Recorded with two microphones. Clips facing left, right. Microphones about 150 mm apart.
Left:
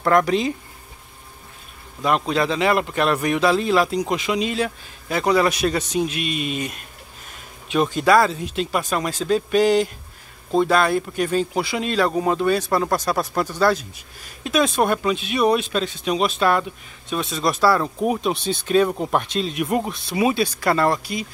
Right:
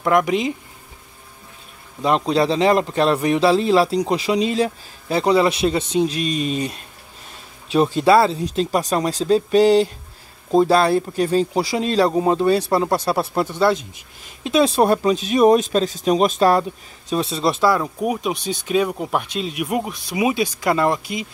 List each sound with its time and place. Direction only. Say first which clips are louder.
0.0 s speech: even; 15° right (ahead or behind)
2.0 s a man's voice: right 3 dB; 30° right (ahead or behind)
17.6 s speech: left 2 dB; 10° right (ahead or behind)